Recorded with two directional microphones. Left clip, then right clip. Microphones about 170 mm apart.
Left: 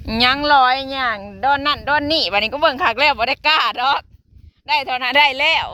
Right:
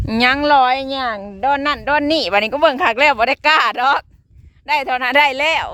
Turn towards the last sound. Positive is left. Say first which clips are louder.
# even
turn(degrees=-45)  # may be behind; listen again after turning